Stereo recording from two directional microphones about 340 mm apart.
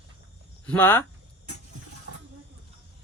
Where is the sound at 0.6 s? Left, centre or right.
Centre.